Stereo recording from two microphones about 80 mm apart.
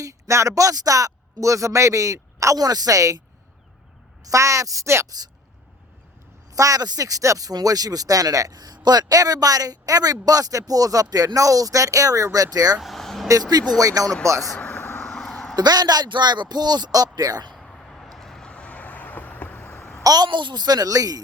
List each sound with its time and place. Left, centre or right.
0.0 s speech: right
4.2 s speech: right
6.5 s speech: right
12.8 s a sound: centre
13.2 s speech: right
14.6 s vehicle: left
15.0 s a sound: centre
15.5 s speech: right
17.5 s vehicle: centre; by 19.7 s left
19.7 s a sound: centre
20.1 s speech: right